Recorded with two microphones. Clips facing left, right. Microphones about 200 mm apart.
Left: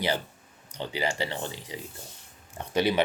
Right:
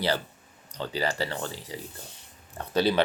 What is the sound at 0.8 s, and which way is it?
Speech, 20° left (ahead or behind).